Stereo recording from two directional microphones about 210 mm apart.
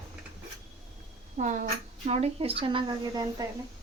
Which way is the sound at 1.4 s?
35° right (ahead or behind).